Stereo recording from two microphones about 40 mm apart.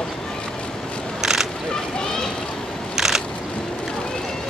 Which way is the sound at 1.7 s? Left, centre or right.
Left.